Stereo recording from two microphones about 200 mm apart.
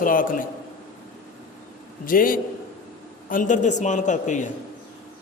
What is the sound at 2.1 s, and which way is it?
A man's voice, 45° left (ahead or behind).